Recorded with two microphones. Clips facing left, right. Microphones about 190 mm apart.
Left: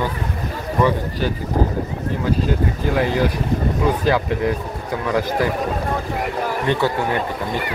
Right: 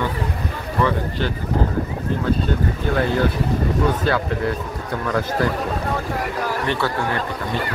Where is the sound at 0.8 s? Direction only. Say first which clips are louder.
Left 2 dB; 15° left (ahead or behind).